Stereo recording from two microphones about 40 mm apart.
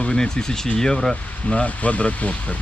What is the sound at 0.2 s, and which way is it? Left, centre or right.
Speech, centre.